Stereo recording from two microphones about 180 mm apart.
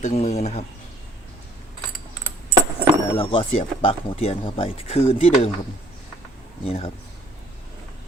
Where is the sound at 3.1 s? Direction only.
30° left (ahead or behind).